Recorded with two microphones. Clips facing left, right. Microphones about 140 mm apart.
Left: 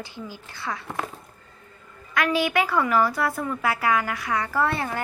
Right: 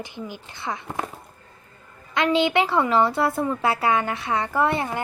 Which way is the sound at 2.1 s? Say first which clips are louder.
Right 3 dB; 25° right (ahead or behind).